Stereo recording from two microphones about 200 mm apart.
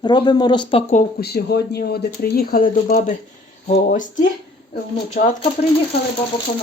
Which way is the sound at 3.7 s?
40° left (ahead or behind).